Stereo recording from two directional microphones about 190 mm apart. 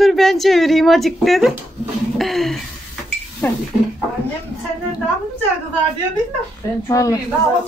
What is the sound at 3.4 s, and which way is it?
Speech, 10° left (ahead or behind).